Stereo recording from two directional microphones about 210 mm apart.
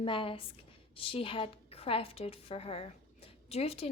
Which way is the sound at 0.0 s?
25° left (ahead or behind).